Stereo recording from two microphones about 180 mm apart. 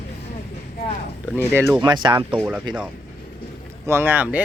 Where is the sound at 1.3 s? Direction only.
10° left (ahead or behind).